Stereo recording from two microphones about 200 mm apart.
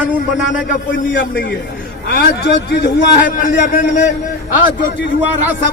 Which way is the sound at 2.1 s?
50° left (ahead or behind).